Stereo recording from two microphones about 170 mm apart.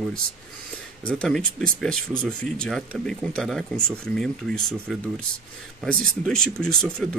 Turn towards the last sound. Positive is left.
turn(degrees=0)  # may be behind; listen again after turning